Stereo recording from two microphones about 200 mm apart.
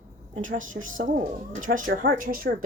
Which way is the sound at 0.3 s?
40° right (ahead or behind).